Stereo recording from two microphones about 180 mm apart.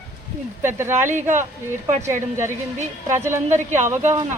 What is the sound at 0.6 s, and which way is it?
Speech, 15° right (ahead or behind).